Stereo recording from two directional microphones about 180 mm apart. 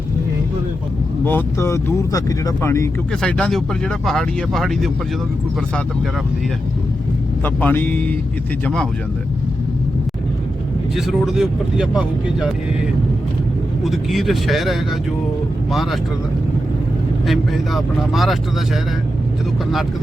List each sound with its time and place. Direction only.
1.3 s speech: 15° left (ahead or behind)
3.1 s speech: 5° left (ahead or behind)
7.4 s speech: 10° left (ahead or behind)
10.9 s speech: centre (ahead or behind)
13.8 s speech: centre (ahead or behind)
17.2 s speech: centre (ahead or behind)